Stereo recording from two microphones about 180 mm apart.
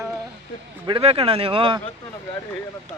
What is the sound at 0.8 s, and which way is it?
Speech, 30° right (ahead or behind).